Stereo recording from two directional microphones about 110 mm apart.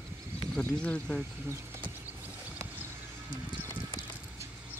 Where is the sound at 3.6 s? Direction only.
25° right (ahead or behind).